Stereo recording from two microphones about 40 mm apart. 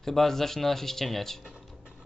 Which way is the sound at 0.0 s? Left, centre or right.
Centre.